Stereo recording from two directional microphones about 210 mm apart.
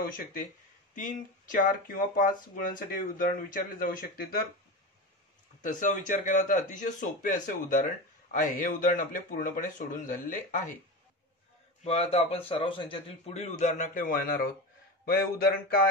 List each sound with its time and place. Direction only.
0.0 s a man's voice: 40° left (ahead or behind)
5.6 s a man's voice: 40° left (ahead or behind)
11.8 s a man's voice: 30° left (ahead or behind); by 15.8 s 45° left (ahead or behind)